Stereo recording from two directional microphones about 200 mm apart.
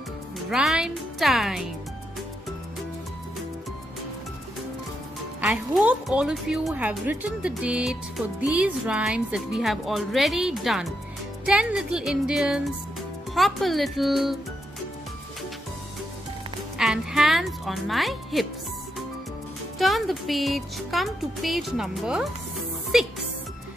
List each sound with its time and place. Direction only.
0.5 s a woman's voice: 5° right (ahead or behind)
5.4 s a woman's voice: 5° right (ahead or behind)
16.7 s a woman's voice: centre (ahead or behind)
19.8 s a woman's voice: centre (ahead or behind)